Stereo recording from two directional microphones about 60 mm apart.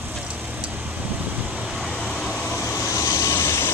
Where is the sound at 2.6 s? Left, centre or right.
Left.